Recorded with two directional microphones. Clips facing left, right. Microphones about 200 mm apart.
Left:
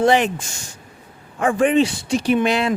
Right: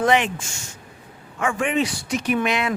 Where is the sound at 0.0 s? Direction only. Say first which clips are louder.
Left 3 dB; 35° left (ahead or behind).